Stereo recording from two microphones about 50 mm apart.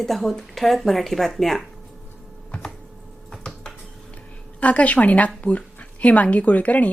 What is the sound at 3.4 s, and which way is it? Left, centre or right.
Dishes, centre.